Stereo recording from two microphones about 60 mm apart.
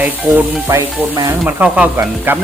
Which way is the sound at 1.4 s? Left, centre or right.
Right.